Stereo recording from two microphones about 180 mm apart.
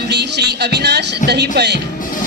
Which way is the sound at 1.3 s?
65° right (ahead or behind).